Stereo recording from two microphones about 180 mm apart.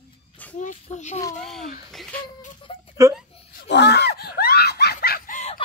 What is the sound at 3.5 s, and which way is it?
Screaming, 70° left (ahead or behind).